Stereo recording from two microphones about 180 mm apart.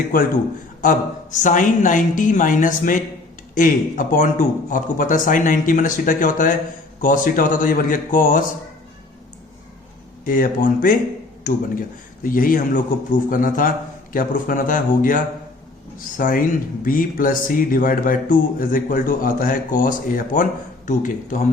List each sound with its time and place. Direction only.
0.8 s speech: 45° left (ahead or behind)
10.2 s speech: 50° left (ahead or behind)
12.2 s speech: 50° left (ahead or behind)